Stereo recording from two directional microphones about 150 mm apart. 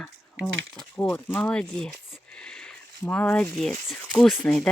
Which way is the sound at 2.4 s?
5° left (ahead or behind).